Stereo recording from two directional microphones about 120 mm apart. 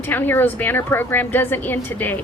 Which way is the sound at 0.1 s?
15° left (ahead or behind).